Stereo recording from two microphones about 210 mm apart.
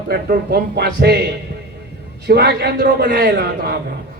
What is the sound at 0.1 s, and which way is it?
A man's voice, 45° right (ahead or behind).